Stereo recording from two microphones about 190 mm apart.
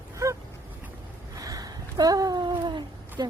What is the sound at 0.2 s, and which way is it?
Dog, 15° right (ahead or behind).